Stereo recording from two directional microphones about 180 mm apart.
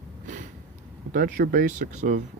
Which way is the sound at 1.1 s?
50° right (ahead or behind).